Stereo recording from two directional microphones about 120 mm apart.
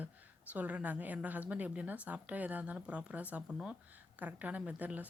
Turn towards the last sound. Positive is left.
turn(degrees=-15)  # may be behind; listen again after turning